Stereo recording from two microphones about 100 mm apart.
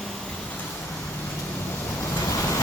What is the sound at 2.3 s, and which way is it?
Vehicle, 30° left (ahead or behind).